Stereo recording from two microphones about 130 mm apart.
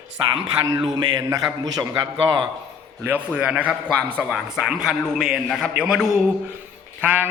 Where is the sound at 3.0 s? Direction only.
10° right (ahead or behind).